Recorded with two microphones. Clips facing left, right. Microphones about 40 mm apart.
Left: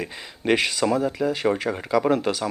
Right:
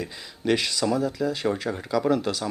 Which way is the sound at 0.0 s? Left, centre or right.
Left.